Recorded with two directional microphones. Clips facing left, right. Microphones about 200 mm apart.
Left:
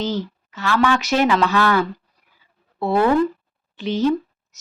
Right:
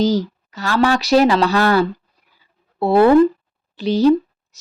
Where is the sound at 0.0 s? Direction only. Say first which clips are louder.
Right 7 dB; 40° right (ahead or behind).